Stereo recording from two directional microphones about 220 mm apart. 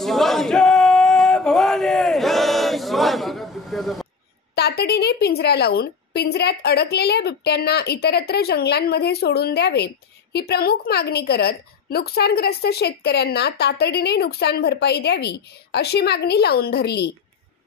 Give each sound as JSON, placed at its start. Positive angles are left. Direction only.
{"t": 0.0, "sound": "male singing", "side_deg": 0}
{"t": 4.6, "sound": "a woman's voice", "side_deg": 45}